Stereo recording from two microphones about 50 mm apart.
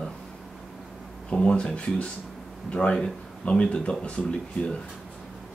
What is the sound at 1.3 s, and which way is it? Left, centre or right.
Speech, left.